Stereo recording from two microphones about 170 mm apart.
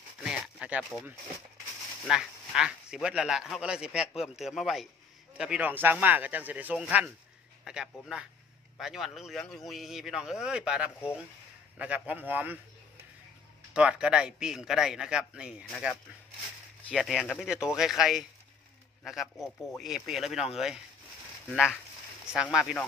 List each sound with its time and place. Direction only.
0.2 s a sound: 5° right (ahead or behind)
2.0 s speech: 5° right (ahead or behind)
13.7 s speech: 5° right (ahead or behind)
22.2 s speech: 5° right (ahead or behind)